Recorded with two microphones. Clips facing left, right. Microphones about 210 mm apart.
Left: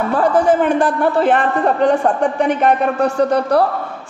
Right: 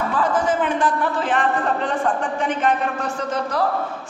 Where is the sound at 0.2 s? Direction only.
65° left (ahead or behind).